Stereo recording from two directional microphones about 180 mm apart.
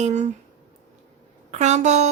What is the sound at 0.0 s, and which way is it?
Speech, 40° right (ahead or behind).